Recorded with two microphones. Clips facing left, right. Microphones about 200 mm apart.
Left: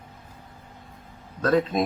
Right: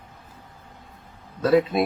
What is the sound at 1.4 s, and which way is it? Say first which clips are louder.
Speech: right 3 dB; 10° right (ahead or behind).